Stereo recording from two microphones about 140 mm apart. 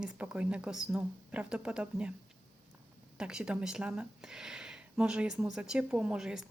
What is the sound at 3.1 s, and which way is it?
Speech, 5° right (ahead or behind).